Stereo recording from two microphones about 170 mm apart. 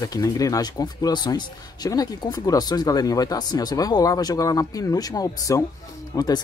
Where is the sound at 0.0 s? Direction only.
20° left (ahead or behind).